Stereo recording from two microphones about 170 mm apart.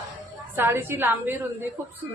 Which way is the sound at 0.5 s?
15° right (ahead or behind).